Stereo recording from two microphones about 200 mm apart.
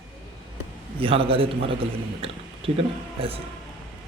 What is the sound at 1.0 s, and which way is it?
Speech, 25° right (ahead or behind).